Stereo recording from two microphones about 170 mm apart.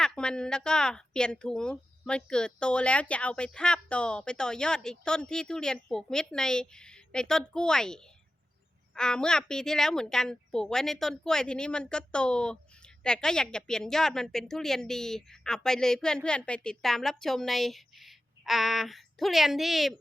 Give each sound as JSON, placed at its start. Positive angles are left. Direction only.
{"t": 0.0, "sound": "a woman's voice", "side_deg": 5}